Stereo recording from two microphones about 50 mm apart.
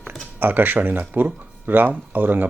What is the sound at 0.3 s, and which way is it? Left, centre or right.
Speech, right.